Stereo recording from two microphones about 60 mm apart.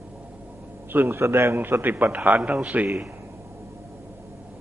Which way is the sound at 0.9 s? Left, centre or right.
Right.